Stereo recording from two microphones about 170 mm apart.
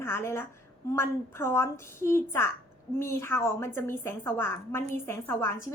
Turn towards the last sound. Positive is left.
turn(degrees=15)  # may be behind; listen again after turning